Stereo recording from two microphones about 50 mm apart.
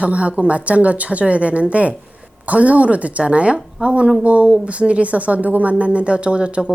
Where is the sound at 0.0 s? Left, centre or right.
Right.